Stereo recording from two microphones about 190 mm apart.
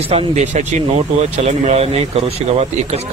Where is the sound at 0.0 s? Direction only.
30° right (ahead or behind).